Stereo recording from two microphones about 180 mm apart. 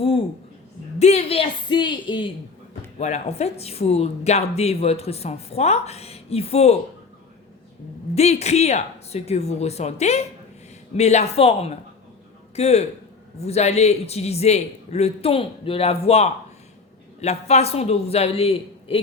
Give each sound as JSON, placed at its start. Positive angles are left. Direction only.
{"t": 0.9, "sound": "a woman's voice", "side_deg": 35}
{"t": 3.0, "sound": "speech", "side_deg": 40}
{"t": 8.1, "sound": "speech", "side_deg": 35}